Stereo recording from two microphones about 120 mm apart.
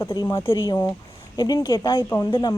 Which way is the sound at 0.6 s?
30° left (ahead or behind).